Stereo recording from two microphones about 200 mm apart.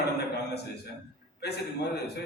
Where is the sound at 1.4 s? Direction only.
55° left (ahead or behind).